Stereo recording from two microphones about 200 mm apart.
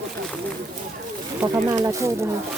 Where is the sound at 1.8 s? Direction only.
15° right (ahead or behind).